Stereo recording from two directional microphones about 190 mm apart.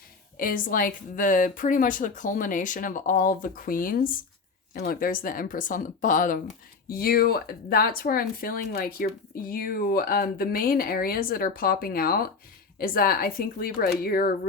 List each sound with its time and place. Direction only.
0.3 s speech: 45° left (ahead or behind)